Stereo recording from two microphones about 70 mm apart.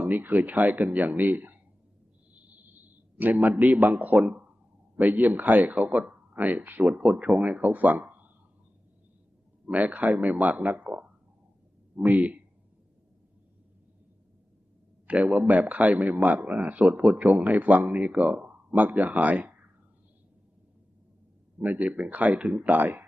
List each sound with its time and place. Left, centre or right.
0.0 s a man's voice: right
3.2 s a man's voice: right
9.6 s a man's voice: right
12.0 s a man's voice: right
15.0 s a man's voice: centre
21.6 s a man's voice: right